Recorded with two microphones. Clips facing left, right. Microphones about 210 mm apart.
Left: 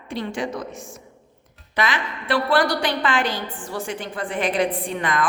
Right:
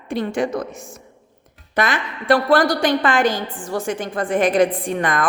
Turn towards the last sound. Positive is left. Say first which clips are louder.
# right 3 dB
turn(degrees=-50)  # may be behind; listen again after turning